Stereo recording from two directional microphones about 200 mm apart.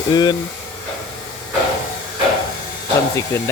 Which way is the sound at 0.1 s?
20° left (ahead or behind).